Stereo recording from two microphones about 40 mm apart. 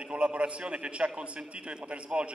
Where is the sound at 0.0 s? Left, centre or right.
Right.